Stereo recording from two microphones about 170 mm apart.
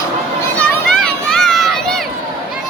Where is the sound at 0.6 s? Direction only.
5° left (ahead or behind).